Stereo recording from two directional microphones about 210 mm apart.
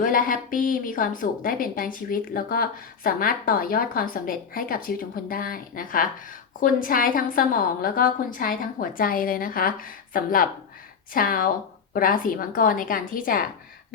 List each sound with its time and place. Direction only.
0.0 s a woman's voice: 40° left (ahead or behind)